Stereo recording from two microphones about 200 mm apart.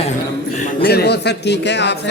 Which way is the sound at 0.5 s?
40° left (ahead or behind).